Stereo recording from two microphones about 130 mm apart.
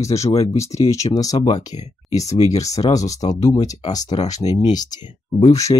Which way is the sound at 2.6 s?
25° left (ahead or behind).